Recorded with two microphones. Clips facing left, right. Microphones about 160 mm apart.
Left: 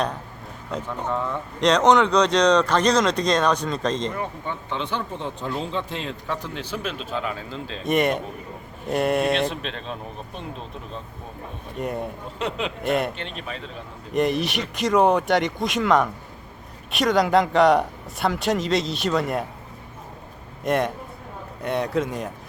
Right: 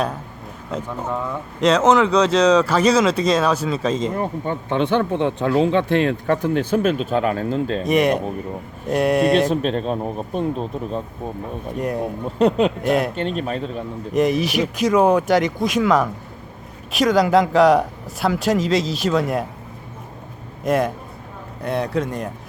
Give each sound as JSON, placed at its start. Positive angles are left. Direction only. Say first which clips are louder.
{"t": 0.7, "sound": "speech", "louder": "right 2 dB", "side_deg": -5}
{"t": 4.1, "sound": "speech", "louder": "right 6 dB", "side_deg": -40}
{"t": 4.7, "sound": "speech", "louder": "right 11 dB", "side_deg": -60}
{"t": 7.9, "sound": "speech", "louder": "right 2 dB", "side_deg": 0}
{"t": 9.5, "sound": "speech", "louder": "right 11 dB", "side_deg": -45}
{"t": 11.8, "sound": "speech", "louder": "right 4 dB", "side_deg": 0}
{"t": 12.4, "sound": "speech", "louder": "right 12 dB", "side_deg": -40}
{"t": 12.8, "sound": "speech", "louder": "right 4 dB", "side_deg": 0}
{"t": 13.1, "sound": "speech", "louder": "right 10 dB", "side_deg": -45}
{"t": 14.1, "sound": "speech", "louder": "right 4 dB", "side_deg": 0}
{"t": 20.7, "sound": "speech", "louder": "right 3 dB", "side_deg": 0}